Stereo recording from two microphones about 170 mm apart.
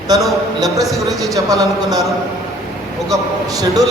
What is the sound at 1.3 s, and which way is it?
Speech, 20° right (ahead or behind).